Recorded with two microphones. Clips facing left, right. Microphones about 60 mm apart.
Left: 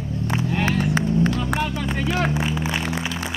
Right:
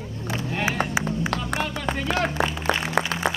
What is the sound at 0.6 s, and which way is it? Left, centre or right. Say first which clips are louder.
Music: left 1 dB; centre.